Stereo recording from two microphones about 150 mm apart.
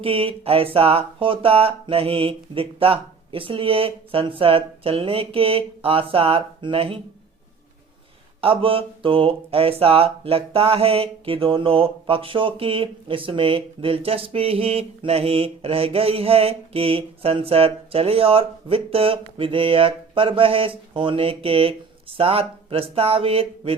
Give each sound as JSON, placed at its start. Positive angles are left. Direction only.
{"t": 0.0, "sound": "speech", "side_deg": -40}
{"t": 8.4, "sound": "speech", "side_deg": -35}